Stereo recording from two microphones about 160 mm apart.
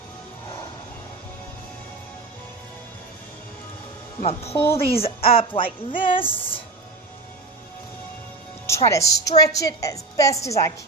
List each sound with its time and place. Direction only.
4.2 s music: 40° left (ahead or behind)
4.5 s speech: 15° left (ahead or behind)
4.9 s music: 35° left (ahead or behind)
8.6 s music: 20° left (ahead or behind)
9.4 s a woman's voice: 20° left (ahead or behind)